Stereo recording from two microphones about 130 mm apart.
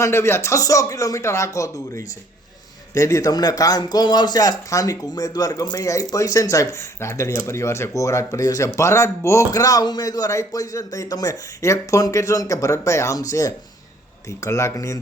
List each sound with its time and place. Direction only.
0.0 s speech: 20° left (ahead or behind)